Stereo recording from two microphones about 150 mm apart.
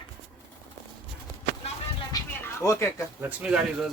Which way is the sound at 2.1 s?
20° left (ahead or behind).